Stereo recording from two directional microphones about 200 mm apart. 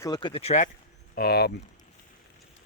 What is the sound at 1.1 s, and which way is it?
Speech, 50° left (ahead or behind).